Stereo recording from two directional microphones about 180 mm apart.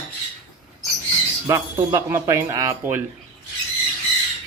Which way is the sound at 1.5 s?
15° right (ahead or behind).